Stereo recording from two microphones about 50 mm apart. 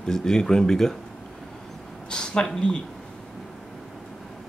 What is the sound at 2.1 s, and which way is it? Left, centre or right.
Speech, centre.